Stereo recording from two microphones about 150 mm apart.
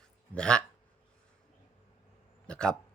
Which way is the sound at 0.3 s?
5° left (ahead or behind).